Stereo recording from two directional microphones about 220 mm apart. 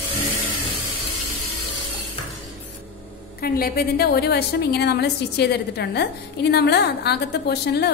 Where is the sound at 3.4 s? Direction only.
45° left (ahead or behind).